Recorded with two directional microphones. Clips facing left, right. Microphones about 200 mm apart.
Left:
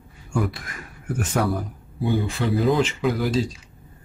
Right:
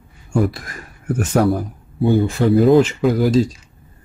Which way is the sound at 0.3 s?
40° right (ahead or behind).